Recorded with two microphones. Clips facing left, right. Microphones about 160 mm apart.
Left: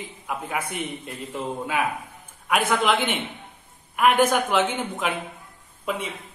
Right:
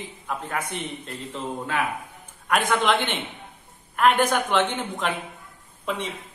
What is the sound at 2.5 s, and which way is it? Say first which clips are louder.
A woman's voice: even; 5° left (ahead or behind).